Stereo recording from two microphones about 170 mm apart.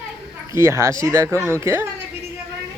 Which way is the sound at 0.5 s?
15° right (ahead or behind).